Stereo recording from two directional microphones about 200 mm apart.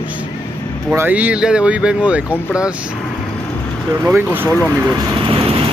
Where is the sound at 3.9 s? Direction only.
15° right (ahead or behind).